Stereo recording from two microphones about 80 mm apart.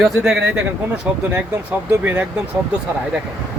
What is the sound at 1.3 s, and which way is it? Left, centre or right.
Speech, centre.